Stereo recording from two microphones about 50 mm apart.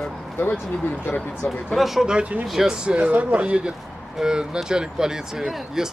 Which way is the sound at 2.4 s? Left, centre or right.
Centre.